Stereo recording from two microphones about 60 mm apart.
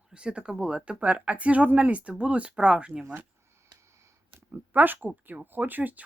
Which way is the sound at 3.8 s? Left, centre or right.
Right.